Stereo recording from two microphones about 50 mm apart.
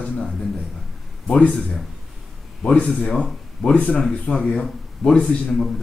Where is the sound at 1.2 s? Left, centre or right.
Left.